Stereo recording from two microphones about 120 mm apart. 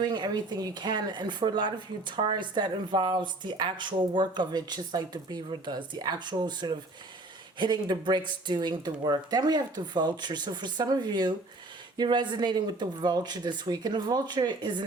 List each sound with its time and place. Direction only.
0.0 s speech: 35° right (ahead or behind)